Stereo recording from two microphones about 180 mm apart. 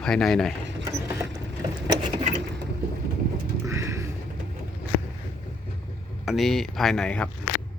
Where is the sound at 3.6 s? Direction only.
15° right (ahead or behind).